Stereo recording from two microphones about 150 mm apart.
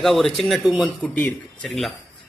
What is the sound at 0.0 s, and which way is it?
Speech, centre (ahead or behind).